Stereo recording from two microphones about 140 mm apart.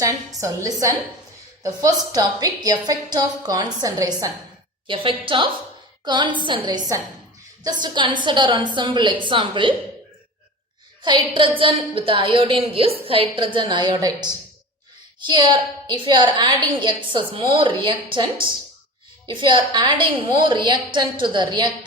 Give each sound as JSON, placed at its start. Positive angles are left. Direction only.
{"t": 0.3, "sound": "a woman's voice", "side_deg": -25}
{"t": 4.9, "sound": "a woman's voice", "side_deg": -40}
{"t": 11.0, "sound": "a woman's voice", "side_deg": -35}